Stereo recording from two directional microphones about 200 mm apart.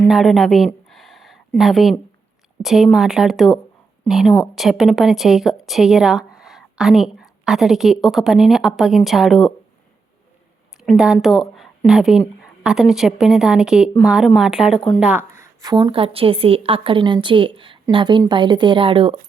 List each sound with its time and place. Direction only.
0.0 s a sound: centre (ahead or behind)
2.6 s speech: centre (ahead or behind)
10.8 s a woman's voice: centre (ahead or behind); by 19.2 s 25° right (ahead or behind)